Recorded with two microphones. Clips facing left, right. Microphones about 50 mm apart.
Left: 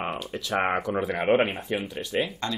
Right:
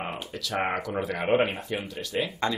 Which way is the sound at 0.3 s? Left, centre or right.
Left.